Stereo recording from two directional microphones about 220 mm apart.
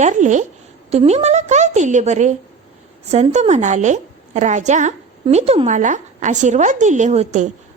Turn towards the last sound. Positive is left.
turn(degrees=-30)  # may be behind; listen again after turning